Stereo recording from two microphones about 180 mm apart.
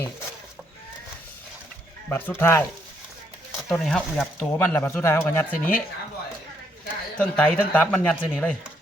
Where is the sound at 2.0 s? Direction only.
10° left (ahead or behind).